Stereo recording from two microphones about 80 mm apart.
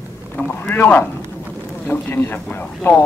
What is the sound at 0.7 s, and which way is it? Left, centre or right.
Speech, left.